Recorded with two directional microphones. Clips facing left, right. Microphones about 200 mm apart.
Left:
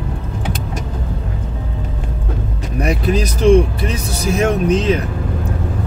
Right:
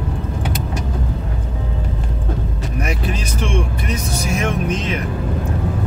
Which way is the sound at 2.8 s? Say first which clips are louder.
Left 9 dB; 35° left (ahead or behind).